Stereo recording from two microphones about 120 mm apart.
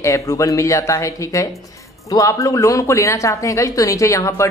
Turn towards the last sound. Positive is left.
turn(degrees=25)  # may be behind; listen again after turning